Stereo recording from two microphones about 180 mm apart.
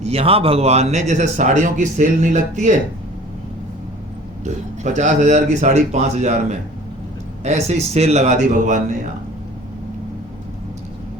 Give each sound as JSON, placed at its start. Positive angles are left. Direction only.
{"t": 0.0, "sound": "speech", "side_deg": -35}
{"t": 4.4, "sound": "speech", "side_deg": -40}